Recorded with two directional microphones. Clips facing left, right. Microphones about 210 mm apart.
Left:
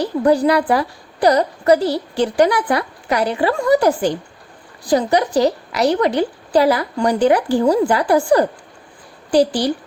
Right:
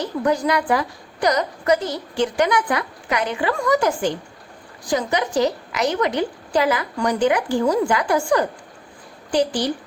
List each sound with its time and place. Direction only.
0.0 s a woman's voice: 35° left (ahead or behind)